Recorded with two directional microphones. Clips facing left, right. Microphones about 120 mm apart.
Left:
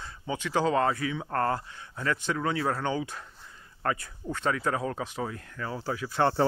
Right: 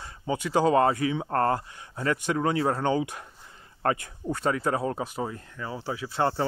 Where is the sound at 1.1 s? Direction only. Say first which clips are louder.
Right 3 dB; 30° right (ahead or behind).